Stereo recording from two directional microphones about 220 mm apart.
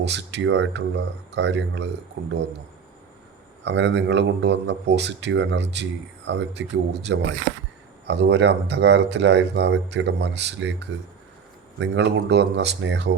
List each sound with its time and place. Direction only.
0.0 s speech: 50° right (ahead or behind)
3.6 s speech: 55° right (ahead or behind)